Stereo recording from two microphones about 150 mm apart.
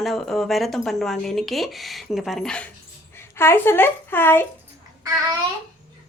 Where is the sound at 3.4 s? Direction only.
15° left (ahead or behind).